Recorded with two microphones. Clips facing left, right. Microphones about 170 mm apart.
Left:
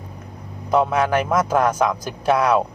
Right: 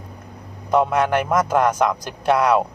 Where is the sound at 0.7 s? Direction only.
5° left (ahead or behind).